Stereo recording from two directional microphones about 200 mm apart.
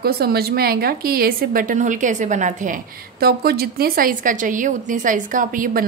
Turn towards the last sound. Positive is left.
turn(degrees=-45)  # may be behind; listen again after turning